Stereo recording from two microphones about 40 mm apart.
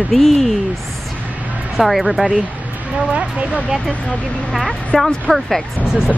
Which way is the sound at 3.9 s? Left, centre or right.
Left.